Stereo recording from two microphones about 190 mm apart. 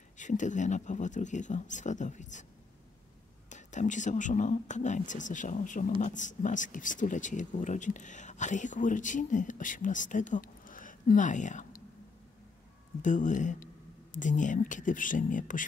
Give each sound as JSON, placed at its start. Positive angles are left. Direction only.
{"t": 0.2, "sound": "speech", "side_deg": 40}
{"t": 3.4, "sound": "speech", "side_deg": 40}
{"t": 13.0, "sound": "speech", "side_deg": 40}